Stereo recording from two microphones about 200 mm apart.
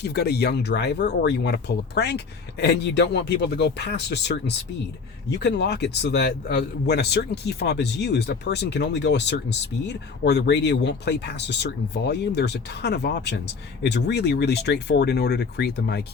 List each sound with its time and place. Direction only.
0.0 s a man's voice: 55° left (ahead or behind)